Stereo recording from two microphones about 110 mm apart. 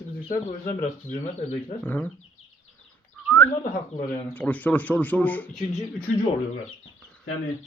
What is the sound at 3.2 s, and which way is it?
Bird, 15° left (ahead or behind).